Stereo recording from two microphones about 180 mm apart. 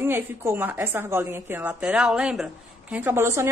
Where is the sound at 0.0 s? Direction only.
15° right (ahead or behind).